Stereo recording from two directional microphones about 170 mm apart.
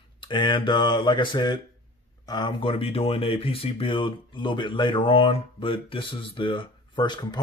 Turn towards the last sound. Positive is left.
turn(degrees=25)  # may be behind; listen again after turning